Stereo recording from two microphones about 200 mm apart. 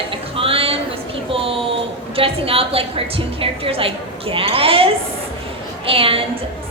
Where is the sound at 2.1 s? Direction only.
30° right (ahead or behind).